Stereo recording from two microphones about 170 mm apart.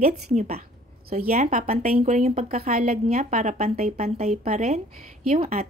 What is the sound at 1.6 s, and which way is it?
Speech, 60° right (ahead or behind).